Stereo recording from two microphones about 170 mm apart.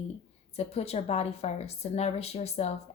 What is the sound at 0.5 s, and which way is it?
A woman's voice, 40° left (ahead or behind).